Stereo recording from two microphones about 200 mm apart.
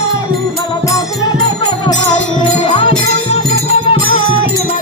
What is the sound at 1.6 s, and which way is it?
Music, 20° left (ahead or behind).